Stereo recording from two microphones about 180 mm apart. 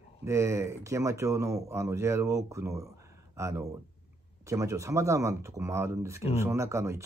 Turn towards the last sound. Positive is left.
turn(degrees=-15)  # may be behind; listen again after turning